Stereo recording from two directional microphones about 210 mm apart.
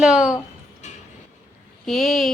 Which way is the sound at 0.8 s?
35° left (ahead or behind).